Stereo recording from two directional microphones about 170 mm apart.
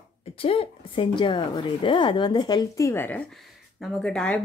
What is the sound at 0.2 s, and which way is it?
A woman's voice, 35° left (ahead or behind).